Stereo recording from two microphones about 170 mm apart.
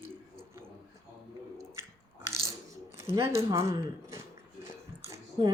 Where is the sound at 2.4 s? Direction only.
15° right (ahead or behind).